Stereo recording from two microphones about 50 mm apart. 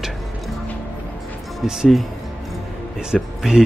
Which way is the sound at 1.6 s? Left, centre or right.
Centre.